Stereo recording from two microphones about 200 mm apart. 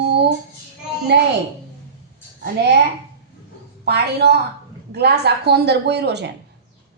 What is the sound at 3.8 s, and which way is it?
A woman's voice, 55° right (ahead or behind).